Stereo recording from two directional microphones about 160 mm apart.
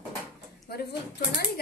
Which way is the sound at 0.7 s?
80° left.